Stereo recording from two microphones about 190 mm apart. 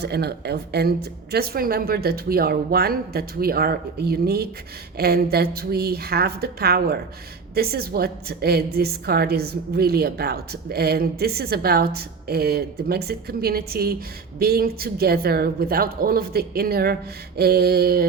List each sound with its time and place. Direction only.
0.0 s a woman's voice: 60° right (ahead or behind)